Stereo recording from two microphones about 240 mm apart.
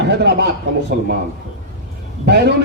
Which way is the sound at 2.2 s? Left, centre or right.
Right.